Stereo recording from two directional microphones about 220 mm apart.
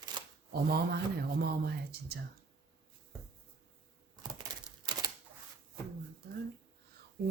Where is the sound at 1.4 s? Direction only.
45° right (ahead or behind).